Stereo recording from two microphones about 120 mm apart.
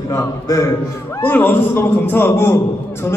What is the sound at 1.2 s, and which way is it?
A man's voice, 15° left (ahead or behind).